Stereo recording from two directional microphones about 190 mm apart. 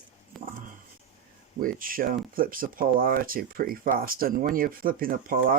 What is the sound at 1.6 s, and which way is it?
Speech, 45° right (ahead or behind).